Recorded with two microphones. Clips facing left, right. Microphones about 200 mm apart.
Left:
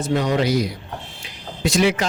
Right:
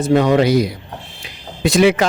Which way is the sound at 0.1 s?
70° right (ahead or behind).